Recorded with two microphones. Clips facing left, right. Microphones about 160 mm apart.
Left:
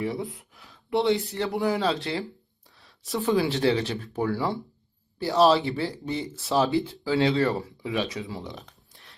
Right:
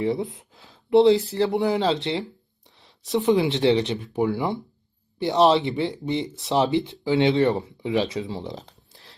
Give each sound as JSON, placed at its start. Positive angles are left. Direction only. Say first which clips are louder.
{"t": 0.0, "sound": "speech", "louder": "right 5 dB", "side_deg": -25}
{"t": 2.6, "sound": "a sound", "louder": "right 3 dB", "side_deg": -20}
{"t": 3.1, "sound": "speech", "louder": "right 4 dB", "side_deg": -20}